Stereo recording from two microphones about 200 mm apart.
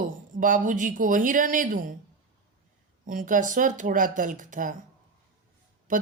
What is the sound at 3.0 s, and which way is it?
Speech, 40° right (ahead or behind).